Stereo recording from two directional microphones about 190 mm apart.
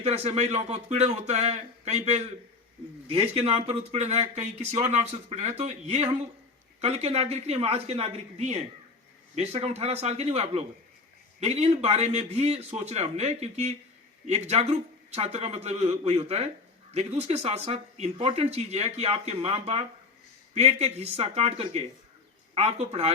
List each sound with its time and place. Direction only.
0.0 s speech: 35° right (ahead or behind)